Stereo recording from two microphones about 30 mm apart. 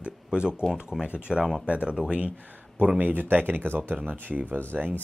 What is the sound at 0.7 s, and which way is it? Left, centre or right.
Speech, right.